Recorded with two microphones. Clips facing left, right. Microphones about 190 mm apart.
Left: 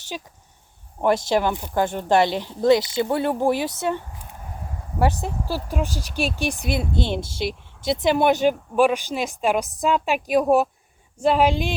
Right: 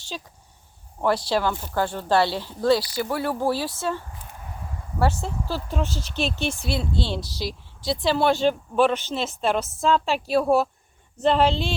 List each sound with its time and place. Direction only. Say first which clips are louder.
0.1 s speech: left 2 dB; 15° left (ahead or behind)
5.2 s speech: left 2 dB; 10° left (ahead or behind)